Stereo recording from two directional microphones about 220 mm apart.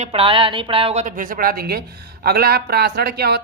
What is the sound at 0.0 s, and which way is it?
Speech, 25° right (ahead or behind).